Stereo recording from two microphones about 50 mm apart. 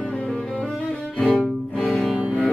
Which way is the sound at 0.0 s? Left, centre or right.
Centre.